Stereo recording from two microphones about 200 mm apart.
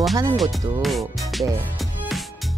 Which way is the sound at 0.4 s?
Centre (ahead or behind).